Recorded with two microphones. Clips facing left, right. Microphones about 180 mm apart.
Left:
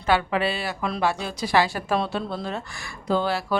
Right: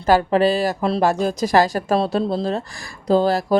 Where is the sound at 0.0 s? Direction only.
40° right (ahead or behind).